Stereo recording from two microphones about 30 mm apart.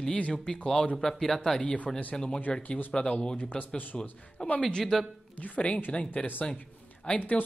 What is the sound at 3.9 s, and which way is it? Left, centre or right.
Speech, centre.